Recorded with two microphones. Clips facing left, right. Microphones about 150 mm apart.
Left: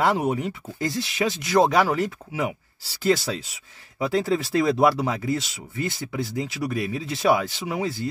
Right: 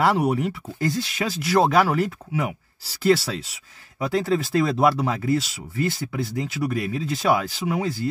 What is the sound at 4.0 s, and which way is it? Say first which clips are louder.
Speech: even; centre (ahead or behind).